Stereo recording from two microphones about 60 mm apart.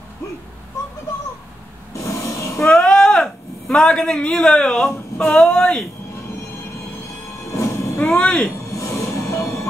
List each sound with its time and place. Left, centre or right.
2.0 s a sound: left
2.6 s a sound: centre
5.2 s speech: centre
7.5 s train: left
8.0 s speech: centre
8.6 s train: left